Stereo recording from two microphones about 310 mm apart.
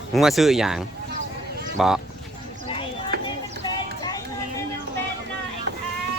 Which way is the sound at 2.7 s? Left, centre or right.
Centre.